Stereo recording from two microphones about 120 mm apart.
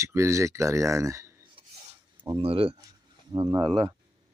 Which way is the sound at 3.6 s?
35° right (ahead or behind).